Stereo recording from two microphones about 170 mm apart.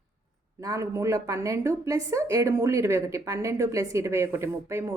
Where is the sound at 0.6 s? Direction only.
20° right (ahead or behind).